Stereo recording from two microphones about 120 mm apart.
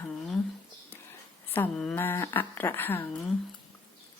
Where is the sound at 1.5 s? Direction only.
20° left (ahead or behind).